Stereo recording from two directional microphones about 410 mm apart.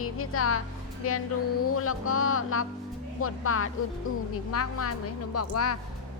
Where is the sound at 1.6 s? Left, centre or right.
Left.